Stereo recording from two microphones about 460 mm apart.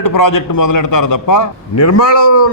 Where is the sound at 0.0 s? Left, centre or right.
Left.